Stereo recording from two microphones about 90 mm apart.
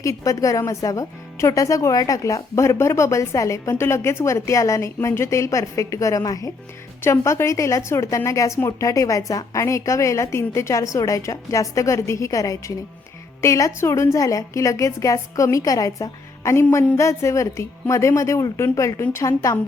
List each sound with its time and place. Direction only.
0.0 s speech: 35° left (ahead or behind)